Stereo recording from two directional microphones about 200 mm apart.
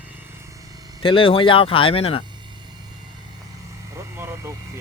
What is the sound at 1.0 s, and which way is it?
Speech, 25° left (ahead or behind).